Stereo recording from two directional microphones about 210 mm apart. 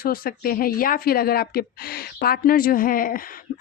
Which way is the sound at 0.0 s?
45° left (ahead or behind).